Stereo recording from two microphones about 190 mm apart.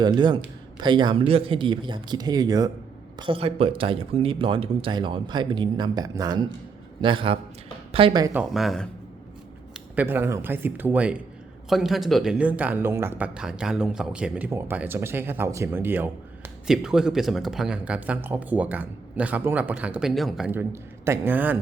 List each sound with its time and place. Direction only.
0.0 s speech: 20° right (ahead or behind)
8.3 s speech: 5° right (ahead or behind)